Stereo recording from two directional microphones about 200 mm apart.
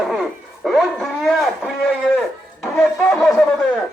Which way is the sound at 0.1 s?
Centre (ahead or behind).